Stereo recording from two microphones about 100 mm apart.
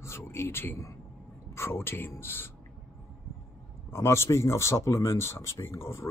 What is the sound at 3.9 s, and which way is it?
Speech, 25° left (ahead or behind).